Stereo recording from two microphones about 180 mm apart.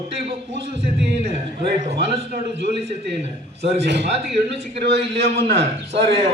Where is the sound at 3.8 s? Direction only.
75° right (ahead or behind).